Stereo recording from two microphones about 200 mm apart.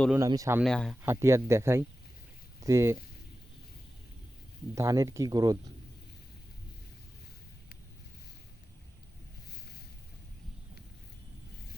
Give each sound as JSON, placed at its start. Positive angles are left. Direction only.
{"t": 0.1, "sound": "speech", "side_deg": -15}
{"t": 0.6, "sound": "speech", "side_deg": 0}
{"t": 1.0, "sound": "speech", "side_deg": -15}
{"t": 4.7, "sound": "speech", "side_deg": -15}